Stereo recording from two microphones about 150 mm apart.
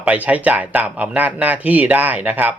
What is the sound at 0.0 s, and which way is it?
Speech, 10° right (ahead or behind).